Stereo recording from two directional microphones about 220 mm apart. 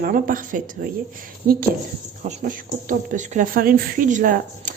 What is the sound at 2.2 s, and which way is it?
Speech, 35° right (ahead or behind).